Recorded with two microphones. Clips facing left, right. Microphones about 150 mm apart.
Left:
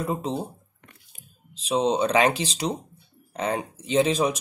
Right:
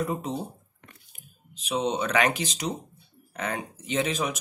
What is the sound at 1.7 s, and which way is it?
Speech, 30° left (ahead or behind).